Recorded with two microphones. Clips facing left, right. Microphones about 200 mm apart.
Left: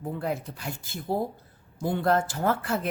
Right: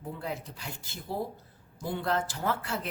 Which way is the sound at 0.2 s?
50° left (ahead or behind).